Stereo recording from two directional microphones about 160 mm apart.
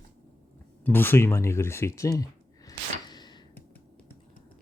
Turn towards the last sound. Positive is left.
turn(degrees=25)  # may be behind; listen again after turning